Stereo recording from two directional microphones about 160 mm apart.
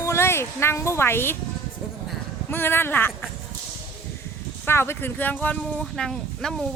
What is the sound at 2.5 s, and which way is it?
Speech, 15° left (ahead or behind).